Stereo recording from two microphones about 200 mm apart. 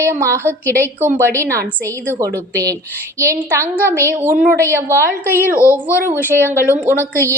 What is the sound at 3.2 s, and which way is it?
Speech, 15° right (ahead or behind).